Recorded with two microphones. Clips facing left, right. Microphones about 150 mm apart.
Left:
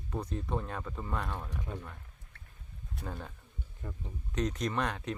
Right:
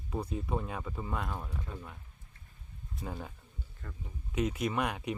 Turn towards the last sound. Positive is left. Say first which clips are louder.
# right 1 dB
turn(degrees=-10)  # may be behind; listen again after turning